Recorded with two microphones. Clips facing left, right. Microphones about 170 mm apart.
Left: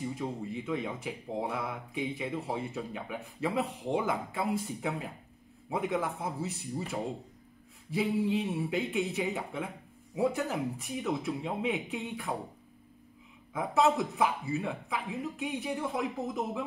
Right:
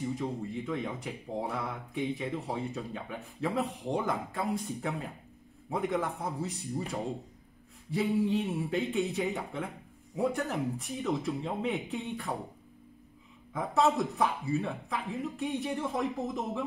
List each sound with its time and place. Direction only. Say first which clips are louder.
0.0 s speech: right 2 dB; 5° left (ahead or behind)
13.5 s speech: left 1 dB; centre (ahead or behind)